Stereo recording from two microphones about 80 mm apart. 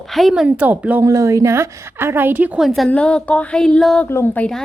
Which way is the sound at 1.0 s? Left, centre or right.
Right.